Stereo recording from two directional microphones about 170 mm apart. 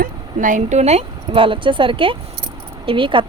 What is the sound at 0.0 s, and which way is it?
Speech, 50° right (ahead or behind).